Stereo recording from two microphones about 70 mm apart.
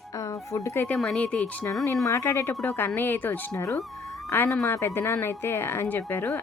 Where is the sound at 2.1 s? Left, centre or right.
Left.